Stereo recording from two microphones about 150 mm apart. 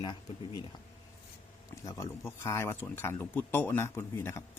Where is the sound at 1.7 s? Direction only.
20° left (ahead or behind).